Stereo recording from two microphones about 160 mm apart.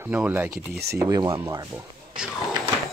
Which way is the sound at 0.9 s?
25° right (ahead or behind).